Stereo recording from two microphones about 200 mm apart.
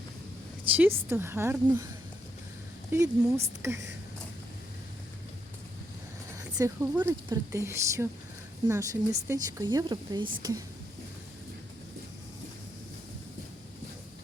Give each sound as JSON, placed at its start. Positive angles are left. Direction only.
{"t": 0.7, "sound": "speech", "side_deg": -10}
{"t": 2.9, "sound": "speech", "side_deg": -15}
{"t": 6.6, "sound": "speech", "side_deg": -15}